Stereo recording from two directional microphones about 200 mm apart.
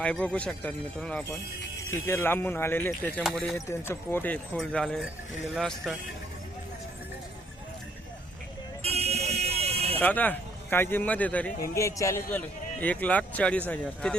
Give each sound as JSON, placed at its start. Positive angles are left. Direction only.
{"t": 0.0, "sound": "a man's voice", "side_deg": 5}
{"t": 8.8, "sound": "buzzer", "side_deg": -30}
{"t": 10.0, "sound": "a man's voice", "side_deg": 10}